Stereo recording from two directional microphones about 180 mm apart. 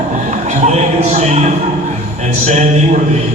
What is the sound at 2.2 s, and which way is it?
Speech, 40° right (ahead or behind).